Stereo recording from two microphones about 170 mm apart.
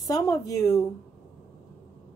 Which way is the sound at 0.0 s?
20° left (ahead or behind).